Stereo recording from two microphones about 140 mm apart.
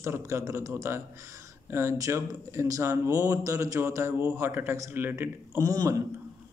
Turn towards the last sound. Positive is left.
turn(degrees=-25)  # may be behind; listen again after turning